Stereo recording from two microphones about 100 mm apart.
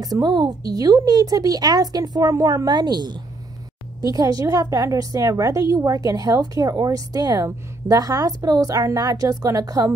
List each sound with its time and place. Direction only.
0.0 s a woman's voice: 40° right (ahead or behind)